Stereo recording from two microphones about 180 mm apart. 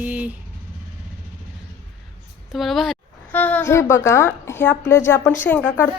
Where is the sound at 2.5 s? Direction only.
Centre (ahead or behind).